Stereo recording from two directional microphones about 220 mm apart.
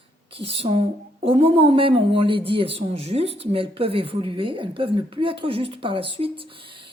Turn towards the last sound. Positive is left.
turn(degrees=-25)  # may be behind; listen again after turning